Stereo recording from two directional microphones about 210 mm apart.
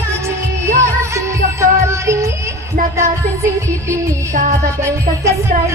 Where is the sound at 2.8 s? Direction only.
40° right (ahead or behind).